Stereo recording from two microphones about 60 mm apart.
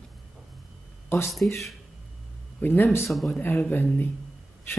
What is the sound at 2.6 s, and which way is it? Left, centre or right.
Speech, left.